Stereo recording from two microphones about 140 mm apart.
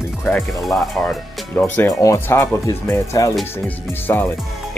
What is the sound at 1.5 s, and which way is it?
Speech, 15° left (ahead or behind).